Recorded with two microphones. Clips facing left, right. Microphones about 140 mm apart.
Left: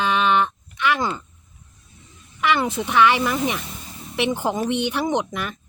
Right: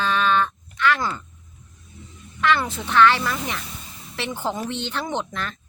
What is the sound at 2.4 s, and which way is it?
Speech, 15° left (ahead or behind).